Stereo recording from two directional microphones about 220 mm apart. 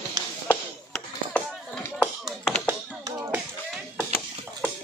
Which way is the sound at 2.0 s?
Centre (ahead or behind).